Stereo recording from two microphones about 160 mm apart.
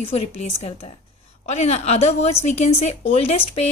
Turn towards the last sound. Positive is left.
turn(degrees=35)  # may be behind; listen again after turning